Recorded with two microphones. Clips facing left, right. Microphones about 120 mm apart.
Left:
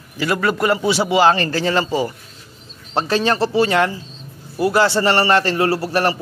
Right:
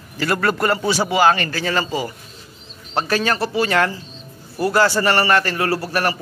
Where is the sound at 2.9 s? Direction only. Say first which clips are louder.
Left 2 dB; 25° left (ahead or behind).